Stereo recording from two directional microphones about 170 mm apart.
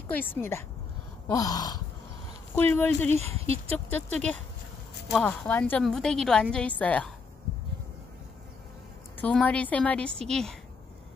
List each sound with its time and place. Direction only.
0.1 s speech: 10° left (ahead or behind)
1.2 s a sound: 20° left (ahead or behind)
2.5 s speech: 10° left (ahead or behind)
3.3 s speech: 35° right (ahead or behind)
3.7 s a woman's voice: 10° left (ahead or behind)
9.2 s a woman's voice: 5° left (ahead or behind)